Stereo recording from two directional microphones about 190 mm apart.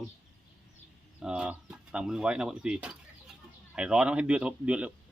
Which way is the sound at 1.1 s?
5° right (ahead or behind).